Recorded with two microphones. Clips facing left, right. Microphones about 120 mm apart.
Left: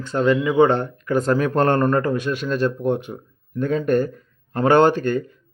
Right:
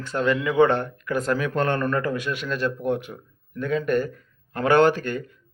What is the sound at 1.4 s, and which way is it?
A man's voice, 40° left (ahead or behind).